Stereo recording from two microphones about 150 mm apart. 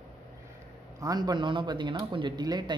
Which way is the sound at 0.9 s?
25° right (ahead or behind).